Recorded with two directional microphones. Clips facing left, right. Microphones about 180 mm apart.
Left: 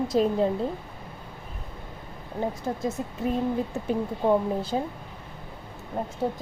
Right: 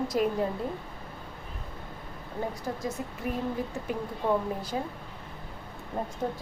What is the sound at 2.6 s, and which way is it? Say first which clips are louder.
A woman's voice: left 4 dB; 25° left (ahead or behind).